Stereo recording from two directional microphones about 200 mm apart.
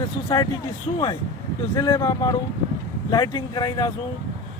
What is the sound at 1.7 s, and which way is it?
Speech, 15° left (ahead or behind).